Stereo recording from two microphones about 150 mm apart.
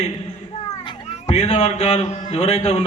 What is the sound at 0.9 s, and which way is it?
Cat, 35° left (ahead or behind).